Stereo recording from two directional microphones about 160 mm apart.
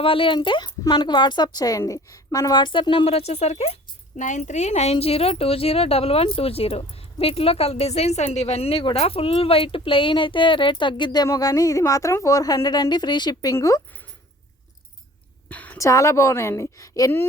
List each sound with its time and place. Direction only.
0.0 s a woman's voice: 35° left (ahead or behind)
15.4 s a sound: 10° left (ahead or behind)
15.9 s a woman's voice: 20° left (ahead or behind)